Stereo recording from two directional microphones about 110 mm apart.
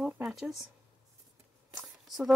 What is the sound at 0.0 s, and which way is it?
Speech, 5° right (ahead or behind).